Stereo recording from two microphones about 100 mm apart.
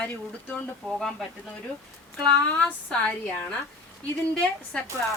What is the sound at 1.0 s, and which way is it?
Speech, 5° left (ahead or behind).